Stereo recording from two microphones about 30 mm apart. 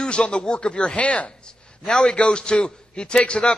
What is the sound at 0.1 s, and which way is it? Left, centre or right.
A man's voice, left.